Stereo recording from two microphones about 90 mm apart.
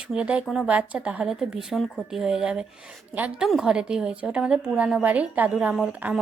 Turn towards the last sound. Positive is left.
turn(degrees=-20)  # may be behind; listen again after turning